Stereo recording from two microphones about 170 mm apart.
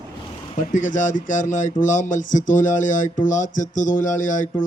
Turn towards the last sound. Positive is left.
turn(degrees=50)  # may be behind; listen again after turning